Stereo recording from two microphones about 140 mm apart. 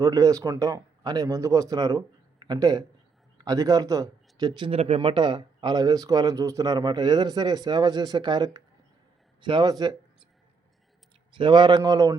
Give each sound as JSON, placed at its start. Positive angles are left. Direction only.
{"t": 0.0, "sound": "speech", "side_deg": -25}
{"t": 11.3, "sound": "speech", "side_deg": -35}